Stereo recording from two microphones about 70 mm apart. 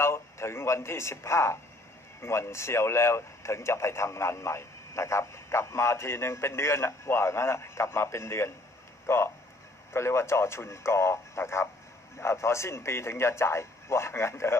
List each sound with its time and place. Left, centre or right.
0.0 s speech: left